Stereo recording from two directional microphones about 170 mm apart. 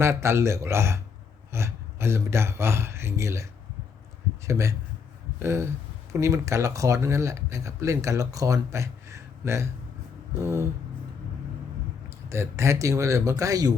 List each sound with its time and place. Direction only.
0.0 s speech: 15° right (ahead or behind)
4.4 s speech: 15° right (ahead or behind)
12.3 s speech: 15° right (ahead or behind)